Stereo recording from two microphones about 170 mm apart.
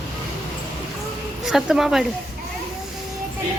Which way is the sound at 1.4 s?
Centre (ahead or behind).